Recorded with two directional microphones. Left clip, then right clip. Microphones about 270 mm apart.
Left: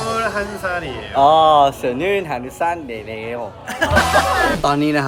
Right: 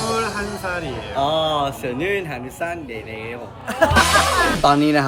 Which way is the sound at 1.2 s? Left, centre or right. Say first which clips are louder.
Left 9 dB; centre.